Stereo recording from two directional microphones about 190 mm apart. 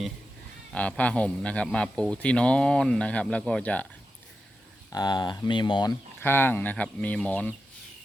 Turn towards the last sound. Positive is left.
turn(degrees=5)  # may be behind; listen again after turning